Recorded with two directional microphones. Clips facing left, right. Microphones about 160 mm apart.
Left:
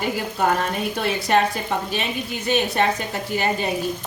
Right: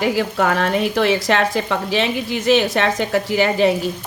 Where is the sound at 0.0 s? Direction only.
90° right.